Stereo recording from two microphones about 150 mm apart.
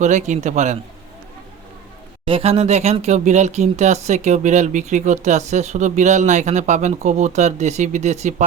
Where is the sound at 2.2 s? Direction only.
40° right (ahead or behind).